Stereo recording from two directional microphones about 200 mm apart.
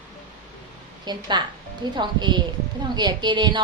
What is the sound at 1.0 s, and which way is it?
A woman's voice, 20° right (ahead or behind).